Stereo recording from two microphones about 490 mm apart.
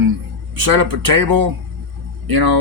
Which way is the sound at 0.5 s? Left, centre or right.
Right.